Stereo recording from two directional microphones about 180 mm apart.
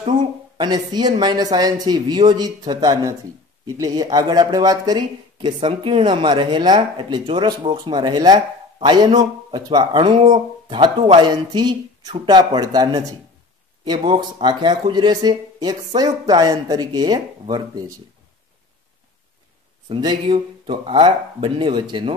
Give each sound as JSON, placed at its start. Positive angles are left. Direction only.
{"t": 0.2, "sound": "speech", "side_deg": -25}
{"t": 19.9, "sound": "speech", "side_deg": -25}